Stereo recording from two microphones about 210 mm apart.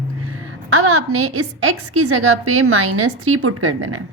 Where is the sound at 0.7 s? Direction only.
90° right.